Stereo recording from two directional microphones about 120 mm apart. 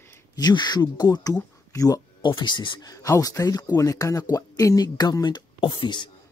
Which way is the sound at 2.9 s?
25° left (ahead or behind).